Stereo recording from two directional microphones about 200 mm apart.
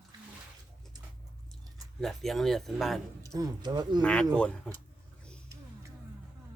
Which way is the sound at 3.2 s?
20° right (ahead or behind).